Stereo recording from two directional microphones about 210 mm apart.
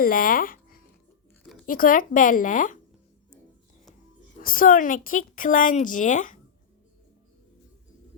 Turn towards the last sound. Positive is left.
turn(degrees=40)  # may be behind; listen again after turning